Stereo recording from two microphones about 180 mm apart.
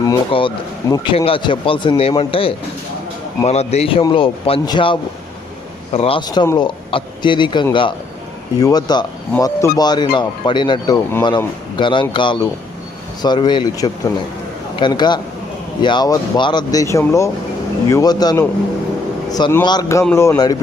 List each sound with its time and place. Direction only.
0.0 s speech: 25° left (ahead or behind)
1.1 s a man's voice: 30° left (ahead or behind)